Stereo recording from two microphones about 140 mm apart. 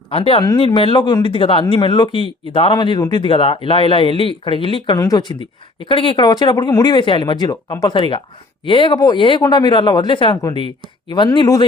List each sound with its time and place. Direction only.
0.1 s speech: 40° left (ahead or behind)
4.9 s speech: 25° left (ahead or behind)